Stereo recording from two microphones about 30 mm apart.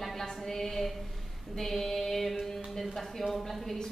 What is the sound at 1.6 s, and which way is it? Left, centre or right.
Female singing, centre.